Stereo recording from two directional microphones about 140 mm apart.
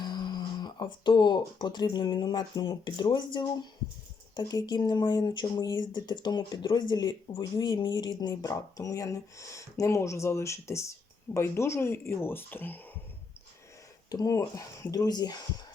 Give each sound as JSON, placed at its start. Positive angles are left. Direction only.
{"t": 0.0, "sound": "speech", "side_deg": 30}
{"t": 14.1, "sound": "speech", "side_deg": 25}